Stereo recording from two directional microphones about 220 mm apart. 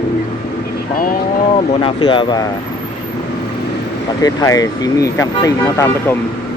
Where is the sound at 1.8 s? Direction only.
20° left (ahead or behind).